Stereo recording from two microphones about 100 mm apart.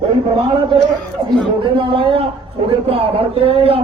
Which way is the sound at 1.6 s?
55° right (ahead or behind).